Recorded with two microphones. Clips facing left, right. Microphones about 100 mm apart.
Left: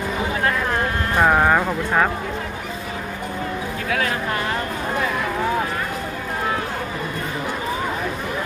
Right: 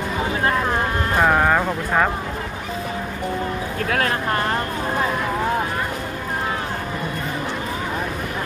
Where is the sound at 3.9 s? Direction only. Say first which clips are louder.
Right 1 dB; 45° right (ahead or behind).